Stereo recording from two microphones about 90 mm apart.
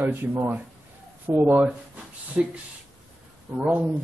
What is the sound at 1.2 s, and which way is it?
Speech, 25° right (ahead or behind).